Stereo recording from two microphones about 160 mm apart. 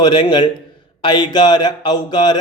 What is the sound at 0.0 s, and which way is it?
A man's voice, 25° left (ahead or behind).